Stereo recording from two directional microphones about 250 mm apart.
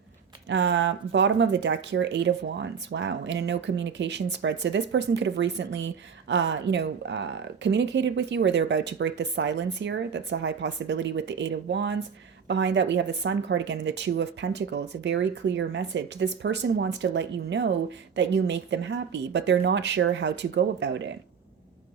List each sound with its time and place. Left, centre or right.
0.4 s speech: right